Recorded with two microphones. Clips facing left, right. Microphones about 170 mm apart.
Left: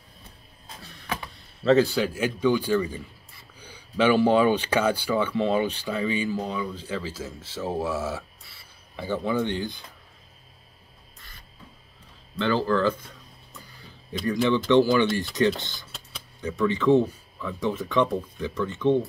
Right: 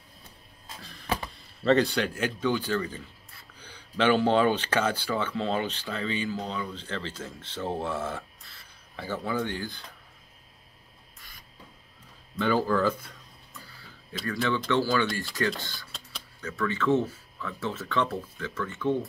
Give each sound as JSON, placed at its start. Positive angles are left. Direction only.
{"t": 1.6, "sound": "speech", "side_deg": 0}
{"t": 11.1, "sound": "music", "side_deg": -10}
{"t": 12.4, "sound": "speech", "side_deg": -10}
{"t": 13.5, "sound": "music", "side_deg": 15}
{"t": 14.2, "sound": "speech", "side_deg": 20}